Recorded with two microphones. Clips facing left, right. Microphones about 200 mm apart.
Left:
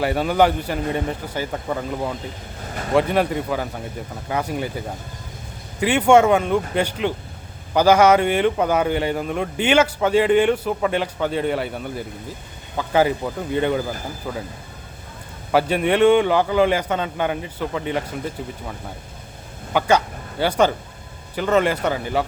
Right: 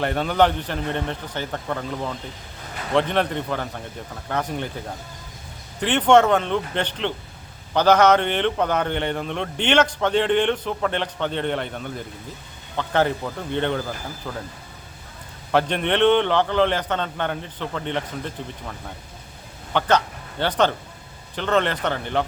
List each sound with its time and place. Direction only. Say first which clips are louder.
0.0 s speech: left 2 dB; 5° left (ahead or behind)
5.8 s speech: left 2 dB; 10° left (ahead or behind)
15.5 s speech: left 3 dB; 5° left (ahead or behind)
19.7 s speech: left 2 dB; 10° left (ahead or behind)